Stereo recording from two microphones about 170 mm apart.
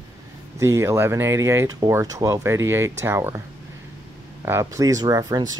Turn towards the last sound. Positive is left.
turn(degrees=-25)  # may be behind; listen again after turning